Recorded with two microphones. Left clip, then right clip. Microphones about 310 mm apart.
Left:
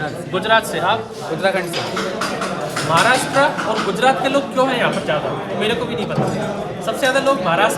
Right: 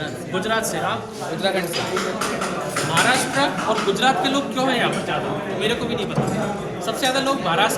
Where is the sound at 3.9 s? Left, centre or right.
Centre.